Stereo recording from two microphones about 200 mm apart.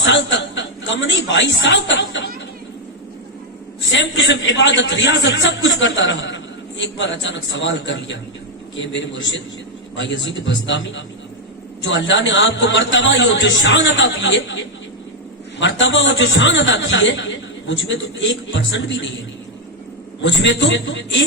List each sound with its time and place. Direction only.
0.0 s a sound: 65° left (ahead or behind)
3.9 s a man's voice: 65° left (ahead or behind)
20.2 s a man's voice: 65° left (ahead or behind)